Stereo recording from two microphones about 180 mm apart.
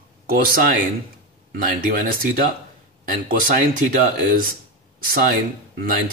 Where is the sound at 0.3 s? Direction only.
55° right (ahead or behind).